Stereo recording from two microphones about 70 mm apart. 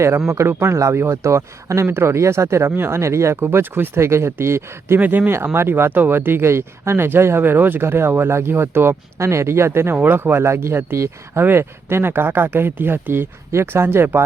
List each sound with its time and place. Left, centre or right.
0.3 s a man's voice: right
4.9 s speech: right